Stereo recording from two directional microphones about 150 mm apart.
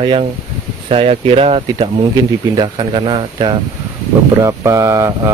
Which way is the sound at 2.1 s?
30° right (ahead or behind).